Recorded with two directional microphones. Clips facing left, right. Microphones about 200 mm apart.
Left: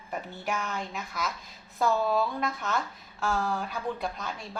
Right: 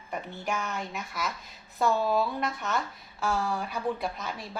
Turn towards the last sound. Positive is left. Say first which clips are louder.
# right 2 dB
turn(degrees=0)  # may be behind; listen again after turning